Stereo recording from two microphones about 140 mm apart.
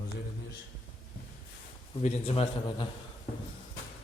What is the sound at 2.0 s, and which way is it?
Speech, 45° left (ahead or behind).